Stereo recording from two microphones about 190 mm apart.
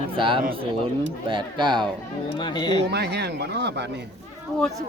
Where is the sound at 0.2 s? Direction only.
25° right (ahead or behind).